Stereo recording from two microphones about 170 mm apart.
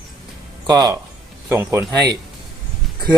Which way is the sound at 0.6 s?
25° right (ahead or behind).